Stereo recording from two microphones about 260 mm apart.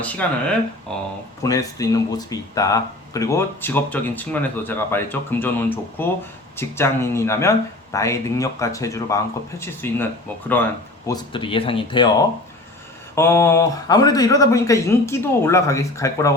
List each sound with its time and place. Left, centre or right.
0.0 s speech: centre